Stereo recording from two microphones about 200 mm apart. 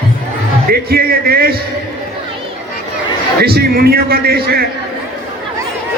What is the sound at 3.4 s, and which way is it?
A man's voice, 50° right (ahead or behind).